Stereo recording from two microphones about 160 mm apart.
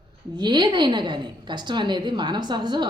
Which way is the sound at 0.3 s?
30° right (ahead or behind).